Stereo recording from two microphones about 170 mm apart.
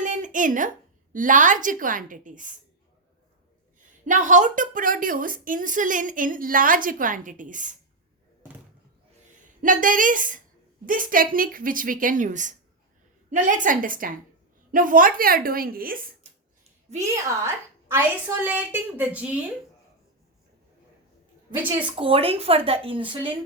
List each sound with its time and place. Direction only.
0.0 s a sound: 45° right (ahead or behind)
1.1 s a woman's voice: 50° right (ahead or behind)
4.0 s a woman's voice: 50° right (ahead or behind)
9.6 s a woman's voice: 50° right (ahead or behind)
17.0 s a woman's voice: 15° right (ahead or behind)
21.9 s speech: 35° right (ahead or behind)